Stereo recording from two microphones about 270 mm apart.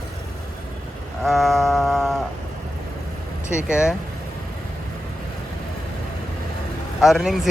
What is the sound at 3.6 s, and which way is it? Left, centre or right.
Speech, centre.